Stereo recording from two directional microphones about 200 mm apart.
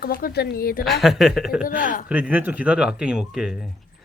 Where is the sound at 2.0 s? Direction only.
5° right (ahead or behind).